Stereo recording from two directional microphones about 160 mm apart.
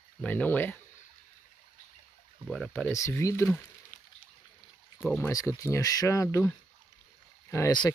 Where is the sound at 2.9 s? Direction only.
20° left (ahead or behind).